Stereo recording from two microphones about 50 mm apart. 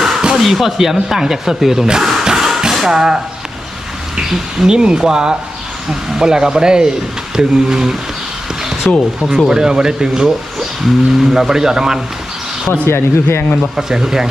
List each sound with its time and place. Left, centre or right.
0.0 s a sound: centre
0.3 s speech: centre
4.2 s speech: centre
8.9 s speech: centre
9.5 s speech: centre
12.9 s speech: left
13.7 s speech: centre